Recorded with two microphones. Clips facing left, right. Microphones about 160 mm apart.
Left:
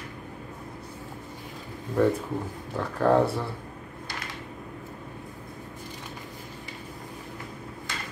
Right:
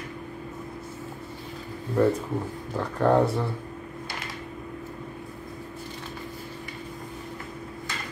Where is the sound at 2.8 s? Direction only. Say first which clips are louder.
Even; centre (ahead or behind).